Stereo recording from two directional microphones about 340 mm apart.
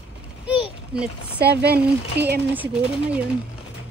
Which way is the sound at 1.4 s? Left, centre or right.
Right.